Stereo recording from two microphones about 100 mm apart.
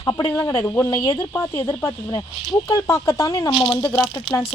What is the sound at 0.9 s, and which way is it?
Speech, 45° left (ahead or behind).